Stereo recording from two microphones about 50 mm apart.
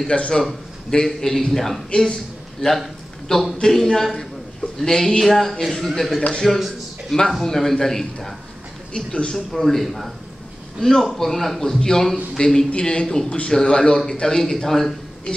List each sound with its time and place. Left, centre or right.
0.3 s a man's voice: centre
2.8 s a sound: centre
3.6 s a man's voice: centre
8.9 s a man's voice: centre
9.5 s a man's voice: centre
10.8 s a man's voice: centre